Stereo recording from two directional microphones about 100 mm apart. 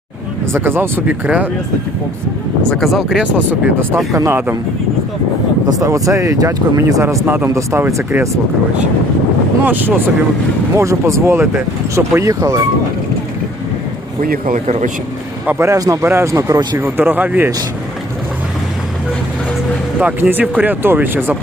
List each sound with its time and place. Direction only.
0.5 s speech: 20° right (ahead or behind)
2.6 s speech: centre (ahead or behind)
3.3 s speech: 20° right (ahead or behind)
4.1 s speech: 35° right (ahead or behind)
5.6 s speech: 35° right (ahead or behind)
7.3 s speech: 20° right (ahead or behind)
7.5 s speech: 30° right (ahead or behind)
9.6 s speech: 20° right (ahead or behind)
10.8 s speech: 30° right (ahead or behind)
15.4 s speech: 25° right (ahead or behind)
20.0 s speech: 15° right (ahead or behind)